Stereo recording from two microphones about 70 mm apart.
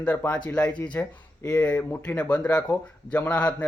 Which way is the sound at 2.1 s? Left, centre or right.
Centre.